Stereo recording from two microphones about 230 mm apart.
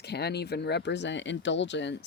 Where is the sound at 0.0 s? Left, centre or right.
Left.